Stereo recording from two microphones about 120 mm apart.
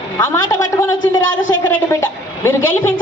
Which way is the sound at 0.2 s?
20° left (ahead or behind).